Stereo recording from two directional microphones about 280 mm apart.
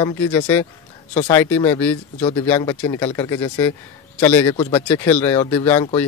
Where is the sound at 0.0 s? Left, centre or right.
Centre.